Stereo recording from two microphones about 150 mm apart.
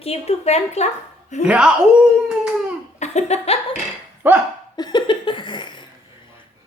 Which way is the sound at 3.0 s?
45° left (ahead or behind).